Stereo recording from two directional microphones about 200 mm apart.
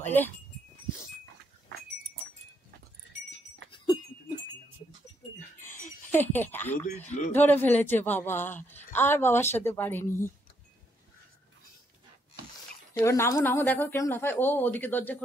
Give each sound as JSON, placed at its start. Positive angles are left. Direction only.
{"t": 0.0, "sound": "speech", "side_deg": 10}
{"t": 3.7, "sound": "goat", "side_deg": 20}
{"t": 6.1, "sound": "a woman's voice", "side_deg": 10}
{"t": 7.0, "sound": "a man's voice", "side_deg": 35}
{"t": 7.3, "sound": "a woman's voice", "side_deg": 10}
{"t": 12.9, "sound": "a woman's voice", "side_deg": 15}